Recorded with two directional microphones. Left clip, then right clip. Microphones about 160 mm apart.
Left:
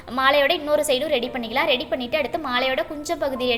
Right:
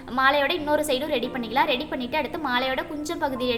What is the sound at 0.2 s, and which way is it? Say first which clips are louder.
A woman's voice: left 3 dB; 10° left (ahead or behind).